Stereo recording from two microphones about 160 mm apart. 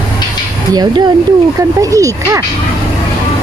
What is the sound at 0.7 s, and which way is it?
Speech, 25° right (ahead or behind).